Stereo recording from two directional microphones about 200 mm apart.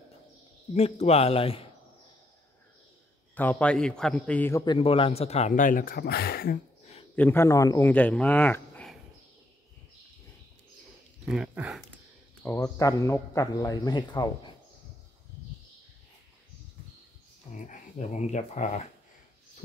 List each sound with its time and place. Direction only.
0.7 s speech: 30° left (ahead or behind)
3.3 s speech: 5° left (ahead or behind)
4.7 s speech: 25° left (ahead or behind)
5.5 s speech: 40° left (ahead or behind)
7.2 s speech: 10° left (ahead or behind)
11.2 s speech: 5° right (ahead or behind)
12.4 s speech: 15° left (ahead or behind)
17.6 s speech: 35° left (ahead or behind)